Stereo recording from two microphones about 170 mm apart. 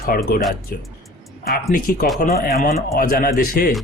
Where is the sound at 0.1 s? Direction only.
60° left (ahead or behind).